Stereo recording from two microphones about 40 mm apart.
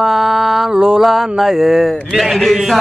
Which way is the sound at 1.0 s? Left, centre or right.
Centre.